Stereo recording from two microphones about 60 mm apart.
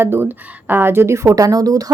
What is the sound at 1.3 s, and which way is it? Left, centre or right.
Speech, right.